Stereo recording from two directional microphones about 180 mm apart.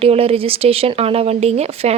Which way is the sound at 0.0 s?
35° right (ahead or behind).